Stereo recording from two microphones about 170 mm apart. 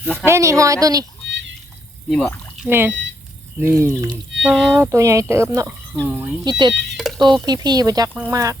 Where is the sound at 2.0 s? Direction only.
5° left (ahead or behind).